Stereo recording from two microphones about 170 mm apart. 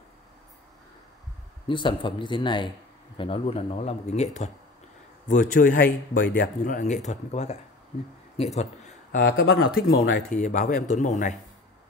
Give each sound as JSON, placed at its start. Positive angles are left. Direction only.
{"t": 1.7, "sound": "speech", "side_deg": 30}
{"t": 8.5, "sound": "a sound", "side_deg": 45}
{"t": 9.2, "sound": "speech", "side_deg": 65}
{"t": 10.3, "sound": "speech", "side_deg": 45}